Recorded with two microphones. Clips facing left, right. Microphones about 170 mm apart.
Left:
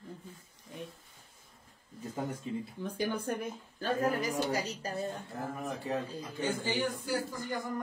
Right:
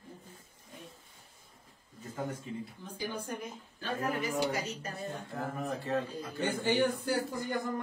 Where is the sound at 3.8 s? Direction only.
40° left (ahead or behind).